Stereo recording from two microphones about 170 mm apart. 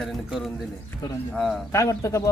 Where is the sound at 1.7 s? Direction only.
20° left (ahead or behind).